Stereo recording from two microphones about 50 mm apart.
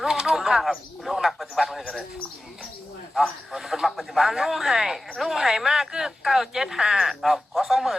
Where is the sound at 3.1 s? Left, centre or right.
Centre.